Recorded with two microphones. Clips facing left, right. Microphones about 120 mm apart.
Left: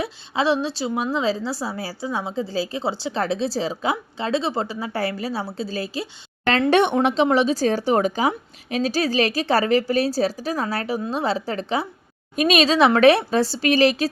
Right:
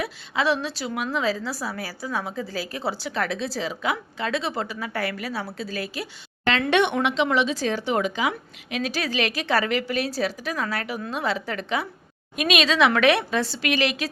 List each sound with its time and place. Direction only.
0.0 s a woman's voice: 25° left (ahead or behind)
6.4 s a woman's voice: 40° left (ahead or behind)